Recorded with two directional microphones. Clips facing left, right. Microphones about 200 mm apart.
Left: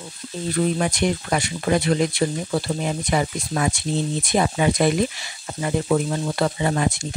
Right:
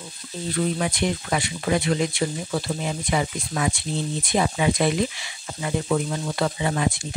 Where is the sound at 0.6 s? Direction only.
45° left (ahead or behind).